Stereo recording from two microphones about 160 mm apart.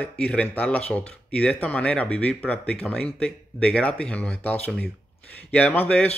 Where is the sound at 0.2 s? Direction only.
5° left (ahead or behind).